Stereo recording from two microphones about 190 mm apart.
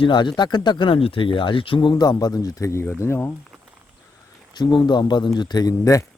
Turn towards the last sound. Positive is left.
turn(degrees=15)  # may be behind; listen again after turning